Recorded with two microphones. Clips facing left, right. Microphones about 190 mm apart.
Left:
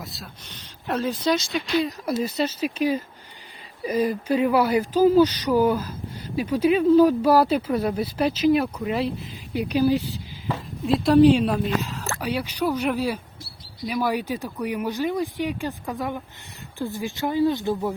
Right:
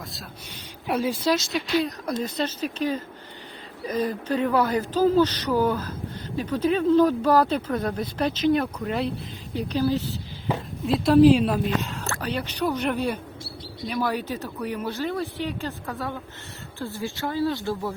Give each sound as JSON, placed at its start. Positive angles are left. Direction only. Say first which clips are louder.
{"t": 0.0, "sound": "a woman's voice", "louder": "left 1 dB", "side_deg": 0}
{"t": 0.9, "sound": "speech", "louder": "even", "side_deg": -10}
{"t": 10.8, "sound": "a woman's voice", "louder": "even", "side_deg": 0}